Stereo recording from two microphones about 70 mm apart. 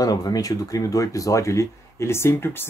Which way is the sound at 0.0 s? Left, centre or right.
Left.